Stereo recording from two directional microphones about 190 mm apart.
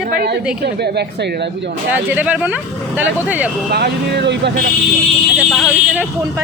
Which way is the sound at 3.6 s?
60° right (ahead or behind).